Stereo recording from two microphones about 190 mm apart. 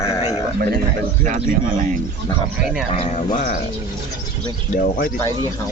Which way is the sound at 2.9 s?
30° left (ahead or behind).